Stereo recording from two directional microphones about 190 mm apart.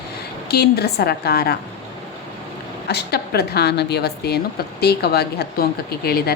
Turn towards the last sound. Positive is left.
turn(degrees=55)  # may be behind; listen again after turning